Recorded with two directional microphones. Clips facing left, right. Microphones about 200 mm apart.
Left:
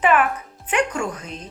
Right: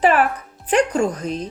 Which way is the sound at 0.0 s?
35° right (ahead or behind).